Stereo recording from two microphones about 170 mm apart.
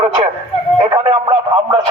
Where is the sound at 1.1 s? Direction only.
30° right (ahead or behind).